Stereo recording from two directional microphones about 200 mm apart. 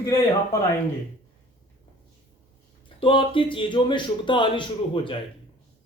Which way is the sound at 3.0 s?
25° left (ahead or behind).